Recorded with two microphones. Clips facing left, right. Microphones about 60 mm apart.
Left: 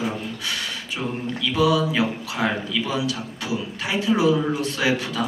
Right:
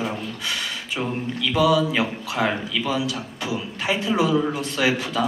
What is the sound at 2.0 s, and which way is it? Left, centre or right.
A man's voice, right.